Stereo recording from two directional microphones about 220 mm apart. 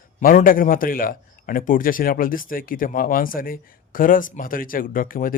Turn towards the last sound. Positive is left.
turn(degrees=40)  # may be behind; listen again after turning